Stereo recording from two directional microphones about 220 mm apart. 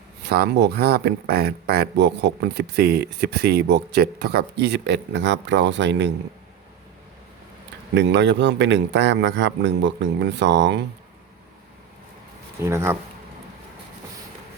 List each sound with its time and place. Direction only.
0.2 s speech: 45° right (ahead or behind)
7.9 s speech: 50° right (ahead or behind)
12.5 s speech: 10° right (ahead or behind)